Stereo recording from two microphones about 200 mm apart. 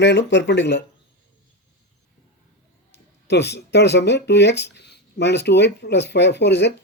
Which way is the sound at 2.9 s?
55° left (ahead or behind).